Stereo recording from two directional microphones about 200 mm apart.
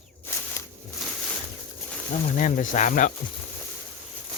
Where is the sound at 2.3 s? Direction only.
40° left (ahead or behind).